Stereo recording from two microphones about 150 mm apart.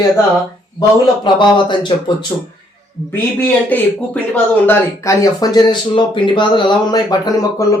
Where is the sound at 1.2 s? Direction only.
30° left (ahead or behind).